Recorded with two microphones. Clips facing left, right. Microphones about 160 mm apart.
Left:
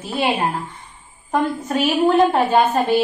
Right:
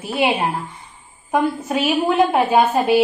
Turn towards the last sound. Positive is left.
turn(degrees=-10)  # may be behind; listen again after turning